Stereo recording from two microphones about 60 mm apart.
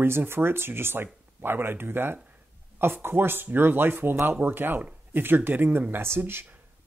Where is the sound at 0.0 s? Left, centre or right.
Right.